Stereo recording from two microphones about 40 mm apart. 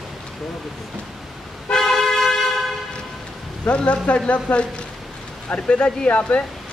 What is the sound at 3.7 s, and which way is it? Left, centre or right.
Speech, left.